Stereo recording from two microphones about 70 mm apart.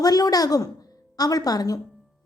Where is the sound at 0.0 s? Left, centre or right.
Left.